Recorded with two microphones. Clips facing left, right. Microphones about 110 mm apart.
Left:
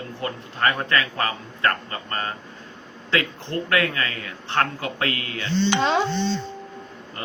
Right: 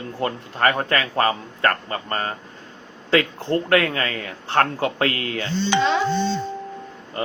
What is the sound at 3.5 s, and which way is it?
A man's voice, 35° right (ahead or behind).